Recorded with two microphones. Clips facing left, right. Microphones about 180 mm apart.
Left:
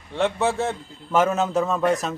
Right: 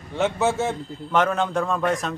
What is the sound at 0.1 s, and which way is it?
A man's voice, centre (ahead or behind).